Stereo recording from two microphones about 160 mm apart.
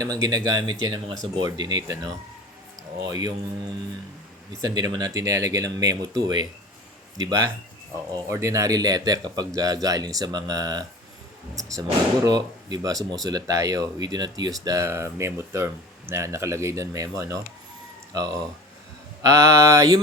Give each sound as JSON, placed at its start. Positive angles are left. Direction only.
{"t": 0.0, "sound": "speech", "side_deg": -20}
{"t": 4.6, "sound": "speech", "side_deg": -25}
{"t": 19.2, "sound": "speech", "side_deg": -20}